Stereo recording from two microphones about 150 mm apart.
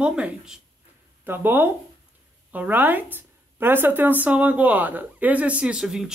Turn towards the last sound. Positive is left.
turn(degrees=-5)  # may be behind; listen again after turning